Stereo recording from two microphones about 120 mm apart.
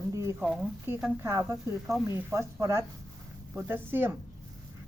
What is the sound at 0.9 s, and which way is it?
Speech, 20° right (ahead or behind).